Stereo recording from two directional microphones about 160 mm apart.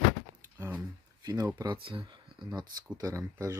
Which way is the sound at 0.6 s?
10° right (ahead or behind).